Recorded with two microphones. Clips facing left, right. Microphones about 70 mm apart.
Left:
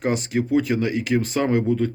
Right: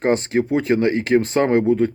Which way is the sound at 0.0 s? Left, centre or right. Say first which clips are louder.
Right 5 dB; right.